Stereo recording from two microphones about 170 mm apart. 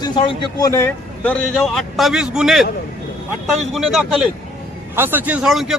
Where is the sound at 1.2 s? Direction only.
Centre (ahead or behind).